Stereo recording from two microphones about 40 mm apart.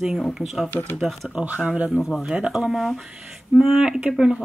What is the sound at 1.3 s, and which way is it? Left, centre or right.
Speech, right.